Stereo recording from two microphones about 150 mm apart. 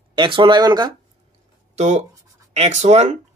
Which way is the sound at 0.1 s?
35° right (ahead or behind).